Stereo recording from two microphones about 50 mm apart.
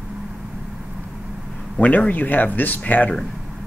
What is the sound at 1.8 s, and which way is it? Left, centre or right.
Speech, left.